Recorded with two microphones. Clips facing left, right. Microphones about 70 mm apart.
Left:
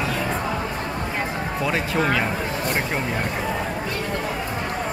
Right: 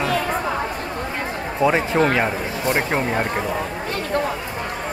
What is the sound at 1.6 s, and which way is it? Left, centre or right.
Speech, right.